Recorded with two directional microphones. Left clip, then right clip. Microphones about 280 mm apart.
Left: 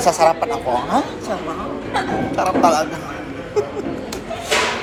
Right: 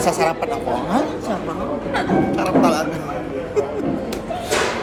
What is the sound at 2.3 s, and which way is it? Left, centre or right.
Speech, centre.